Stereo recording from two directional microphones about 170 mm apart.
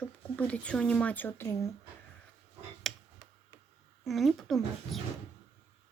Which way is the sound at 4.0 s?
Centre (ahead or behind).